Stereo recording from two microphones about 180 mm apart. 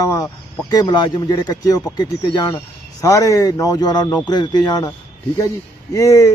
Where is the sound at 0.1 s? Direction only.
20° left (ahead or behind).